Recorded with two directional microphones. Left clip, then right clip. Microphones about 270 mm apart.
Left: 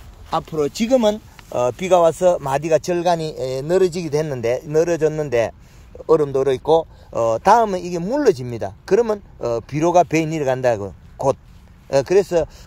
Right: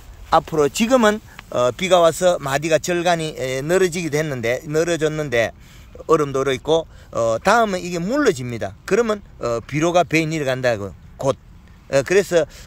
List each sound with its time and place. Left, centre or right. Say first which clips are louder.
0.3 s speech: right 5 dB; centre
10.8 s a man's voice: left 2 dB; centre
11.9 s speech: even; centre